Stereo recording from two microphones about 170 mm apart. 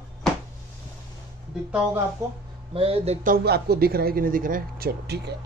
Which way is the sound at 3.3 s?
70° right (ahead or behind).